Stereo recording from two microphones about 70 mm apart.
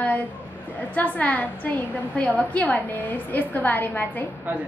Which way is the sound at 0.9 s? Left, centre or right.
Left.